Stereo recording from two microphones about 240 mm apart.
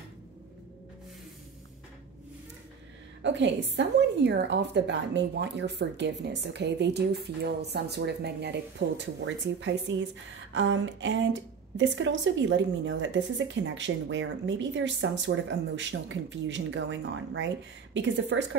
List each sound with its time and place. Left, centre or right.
3.2 s a woman's voice: right